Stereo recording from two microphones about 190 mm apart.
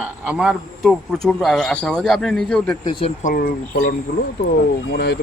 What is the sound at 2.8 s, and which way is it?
Speech, 30° left (ahead or behind).